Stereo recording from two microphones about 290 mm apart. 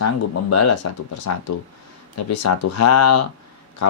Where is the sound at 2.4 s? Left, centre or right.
Left.